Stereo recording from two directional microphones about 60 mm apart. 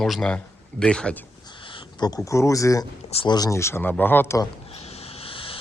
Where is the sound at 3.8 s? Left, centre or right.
Left.